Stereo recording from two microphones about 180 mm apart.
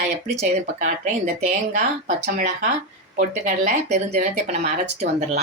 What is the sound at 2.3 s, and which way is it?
Speech, 40° right (ahead or behind).